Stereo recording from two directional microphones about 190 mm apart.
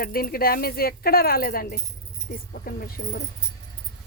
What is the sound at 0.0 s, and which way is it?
Speech, 50° left (ahead or behind).